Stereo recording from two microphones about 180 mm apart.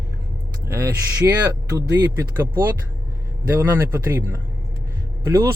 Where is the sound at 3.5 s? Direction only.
10° right (ahead or behind).